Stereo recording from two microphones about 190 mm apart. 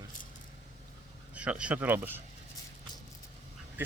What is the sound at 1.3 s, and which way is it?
Speech, 5° right (ahead or behind).